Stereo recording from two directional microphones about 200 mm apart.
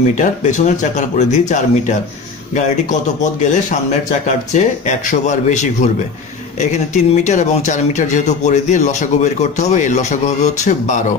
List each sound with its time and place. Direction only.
0.2 s speech: 40° left (ahead or behind)
4.5 s speech: 40° left (ahead or behind)